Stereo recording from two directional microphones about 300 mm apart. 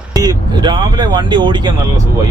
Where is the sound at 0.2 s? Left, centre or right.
Centre.